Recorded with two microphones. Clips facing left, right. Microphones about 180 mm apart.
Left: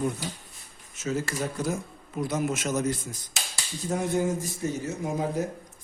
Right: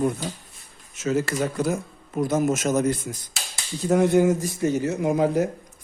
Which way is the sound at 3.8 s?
75° right (ahead or behind).